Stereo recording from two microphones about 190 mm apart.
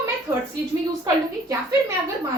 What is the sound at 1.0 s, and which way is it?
Speech, 15° right (ahead or behind).